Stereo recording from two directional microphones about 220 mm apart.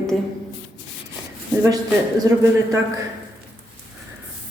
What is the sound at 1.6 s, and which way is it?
Speech, 15° right (ahead or behind).